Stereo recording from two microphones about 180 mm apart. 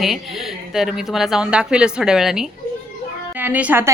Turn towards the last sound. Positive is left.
turn(degrees=-10)  # may be behind; listen again after turning